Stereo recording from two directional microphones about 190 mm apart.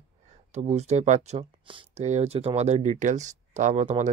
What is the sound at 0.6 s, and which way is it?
Speech, 35° right (ahead or behind).